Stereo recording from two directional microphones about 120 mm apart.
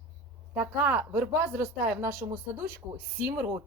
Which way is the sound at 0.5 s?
15° right (ahead or behind).